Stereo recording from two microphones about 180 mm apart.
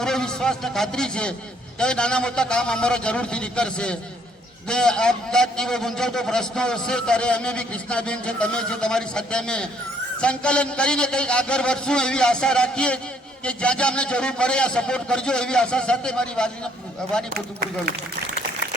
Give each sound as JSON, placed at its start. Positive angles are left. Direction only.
{"t": 0.0, "sound": "a man's voice", "side_deg": 5}
{"t": 17.2, "sound": "speech", "side_deg": -60}